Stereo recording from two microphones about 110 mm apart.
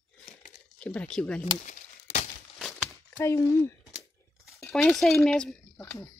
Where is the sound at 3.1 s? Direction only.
25° left (ahead or behind).